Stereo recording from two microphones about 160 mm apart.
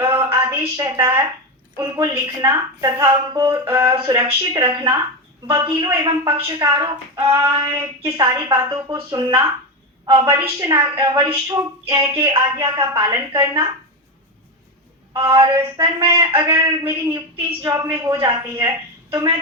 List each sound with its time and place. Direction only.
0.0 s a sound: 15° right (ahead or behind)
1.8 s speech: 15° right (ahead or behind)
7.3 s a woman's voice: 15° right (ahead or behind)
15.4 s a woman's voice: 30° right (ahead or behind)
19.1 s speech: 25° right (ahead or behind)